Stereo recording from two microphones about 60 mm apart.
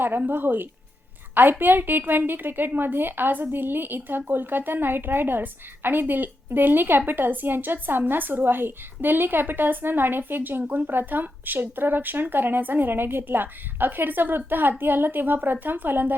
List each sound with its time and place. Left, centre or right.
0.2 s a woman's voice: right